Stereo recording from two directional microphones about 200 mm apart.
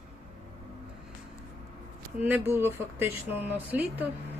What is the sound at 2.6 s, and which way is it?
Speech, 10° right (ahead or behind).